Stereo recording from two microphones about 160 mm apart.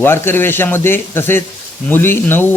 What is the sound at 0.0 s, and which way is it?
A man's voice, 15° left (ahead or behind).